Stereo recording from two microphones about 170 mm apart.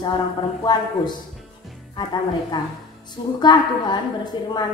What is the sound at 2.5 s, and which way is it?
A woman's voice, 25° left (ahead or behind).